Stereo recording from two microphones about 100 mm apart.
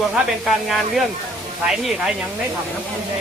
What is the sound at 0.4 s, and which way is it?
Speech, centre (ahead or behind).